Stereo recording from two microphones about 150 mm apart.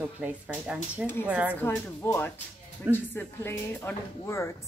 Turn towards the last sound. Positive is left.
turn(degrees=15)  # may be behind; listen again after turning